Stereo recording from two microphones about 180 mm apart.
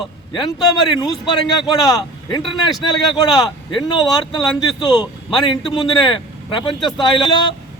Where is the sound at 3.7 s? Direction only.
25° left (ahead or behind).